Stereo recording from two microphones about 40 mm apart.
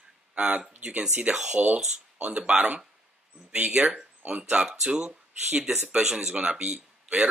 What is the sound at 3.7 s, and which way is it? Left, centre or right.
Speech, centre.